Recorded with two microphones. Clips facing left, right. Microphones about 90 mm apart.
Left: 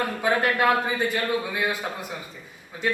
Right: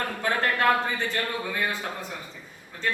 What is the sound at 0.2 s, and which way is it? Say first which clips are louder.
A man's voice: left 3 dB; 10° left (ahead or behind).